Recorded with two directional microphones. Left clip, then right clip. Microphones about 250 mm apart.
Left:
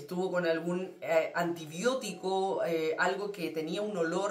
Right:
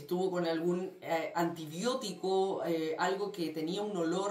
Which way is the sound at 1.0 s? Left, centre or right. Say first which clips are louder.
Left 5 dB; centre.